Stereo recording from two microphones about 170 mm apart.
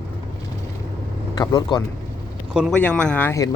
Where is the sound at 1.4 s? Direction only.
25° left (ahead or behind).